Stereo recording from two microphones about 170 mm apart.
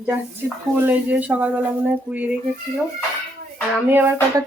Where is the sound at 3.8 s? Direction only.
10° right (ahead or behind).